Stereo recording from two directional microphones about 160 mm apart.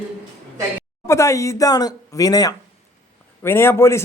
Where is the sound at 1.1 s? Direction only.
20° left (ahead or behind).